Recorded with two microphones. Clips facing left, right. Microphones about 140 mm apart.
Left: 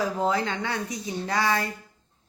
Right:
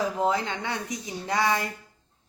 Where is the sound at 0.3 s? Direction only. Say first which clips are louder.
Left 1 dB; 20° right (ahead or behind).